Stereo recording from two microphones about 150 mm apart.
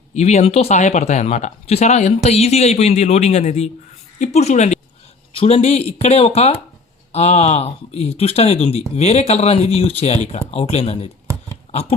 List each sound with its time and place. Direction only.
0.1 s speech: 50° left (ahead or behind)
11.7 s dog: 45° left (ahead or behind)